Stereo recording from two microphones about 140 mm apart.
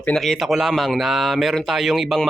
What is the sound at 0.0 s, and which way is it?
Speech, 5° left (ahead or behind).